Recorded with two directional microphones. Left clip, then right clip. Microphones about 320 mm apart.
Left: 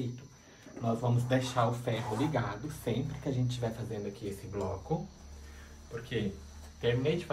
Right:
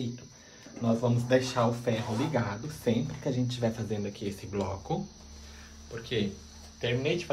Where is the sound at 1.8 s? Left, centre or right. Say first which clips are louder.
Right 2 dB; right.